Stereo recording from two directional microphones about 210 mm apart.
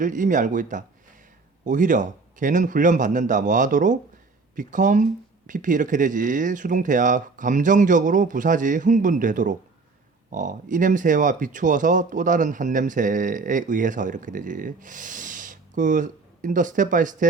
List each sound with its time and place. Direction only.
0.0 s speech: 40° right (ahead or behind)